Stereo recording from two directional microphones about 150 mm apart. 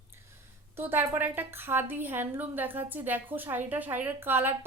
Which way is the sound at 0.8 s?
15° right (ahead or behind).